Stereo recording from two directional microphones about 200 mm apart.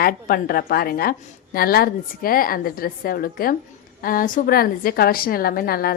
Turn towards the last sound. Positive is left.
turn(degrees=50)  # may be behind; listen again after turning